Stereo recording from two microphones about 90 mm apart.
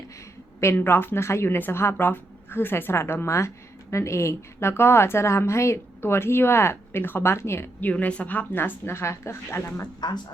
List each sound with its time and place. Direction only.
0.8 s a woman's voice: 25° left (ahead or behind)
9.8 s speech: 50° left (ahead or behind)